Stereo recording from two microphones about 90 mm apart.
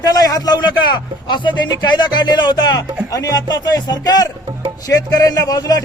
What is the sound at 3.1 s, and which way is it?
A man's voice, 40° left (ahead or behind).